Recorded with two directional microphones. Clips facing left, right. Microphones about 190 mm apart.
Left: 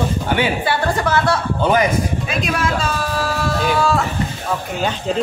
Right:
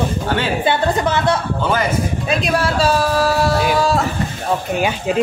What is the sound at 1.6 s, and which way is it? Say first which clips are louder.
Speech: left 6 dB; 15° left (ahead or behind).